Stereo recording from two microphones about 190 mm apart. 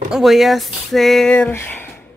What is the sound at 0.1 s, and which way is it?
A woman's voice, centre (ahead or behind).